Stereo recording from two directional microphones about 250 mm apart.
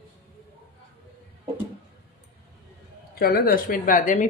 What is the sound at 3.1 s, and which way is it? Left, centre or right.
A woman's voice, left.